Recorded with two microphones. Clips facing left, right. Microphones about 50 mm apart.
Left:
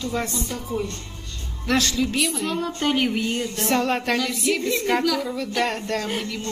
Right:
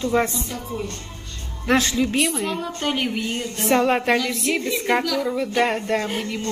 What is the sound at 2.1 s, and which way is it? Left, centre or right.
A woman's voice, centre.